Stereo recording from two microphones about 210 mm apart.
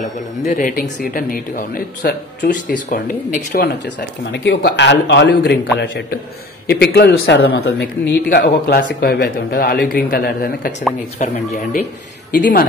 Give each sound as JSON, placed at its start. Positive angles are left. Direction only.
{"t": 0.5, "sound": "speech", "side_deg": 40}
{"t": 4.3, "sound": "a man's voice", "side_deg": 55}
{"t": 11.2, "sound": "speech", "side_deg": 35}